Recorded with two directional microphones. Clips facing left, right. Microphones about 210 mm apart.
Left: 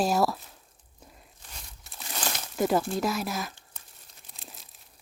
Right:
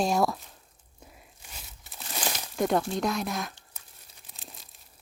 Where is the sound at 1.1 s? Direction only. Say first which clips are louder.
Even; 5° right (ahead or behind).